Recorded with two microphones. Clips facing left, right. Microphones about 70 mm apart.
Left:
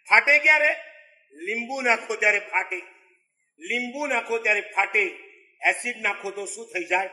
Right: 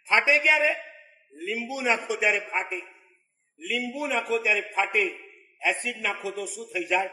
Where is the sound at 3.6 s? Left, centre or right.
Left.